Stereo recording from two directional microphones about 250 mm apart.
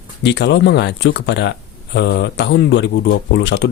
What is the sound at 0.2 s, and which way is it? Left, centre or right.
Speech, left.